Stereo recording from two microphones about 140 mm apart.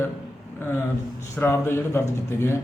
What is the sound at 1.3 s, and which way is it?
A man's voice, 15° left (ahead or behind).